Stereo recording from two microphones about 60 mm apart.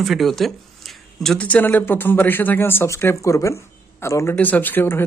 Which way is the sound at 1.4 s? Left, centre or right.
Left.